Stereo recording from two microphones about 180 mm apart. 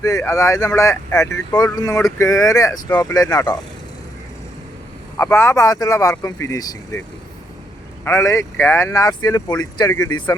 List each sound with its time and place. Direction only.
0.0 s speech: 20° left (ahead or behind)
5.1 s speech: 15° left (ahead or behind)
8.0 s speech: 15° left (ahead or behind)